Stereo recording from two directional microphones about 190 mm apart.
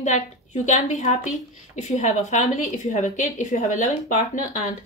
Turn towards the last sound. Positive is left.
turn(degrees=40)  # may be behind; listen again after turning